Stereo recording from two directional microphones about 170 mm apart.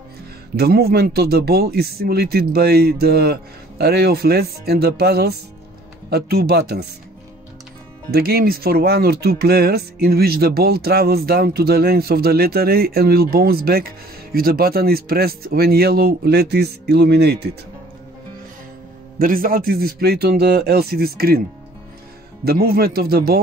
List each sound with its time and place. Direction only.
0.6 s speech: 65° right (ahead or behind)
8.1 s speech: 65° right (ahead or behind)
19.1 s speech: 55° right (ahead or behind)
22.4 s speech: 65° right (ahead or behind)